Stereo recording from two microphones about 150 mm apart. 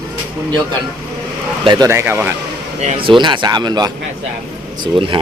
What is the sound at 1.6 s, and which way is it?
Speech, 25° right (ahead or behind).